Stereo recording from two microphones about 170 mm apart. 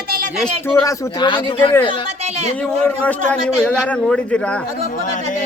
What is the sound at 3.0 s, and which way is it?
A man's voice, 10° left (ahead or behind).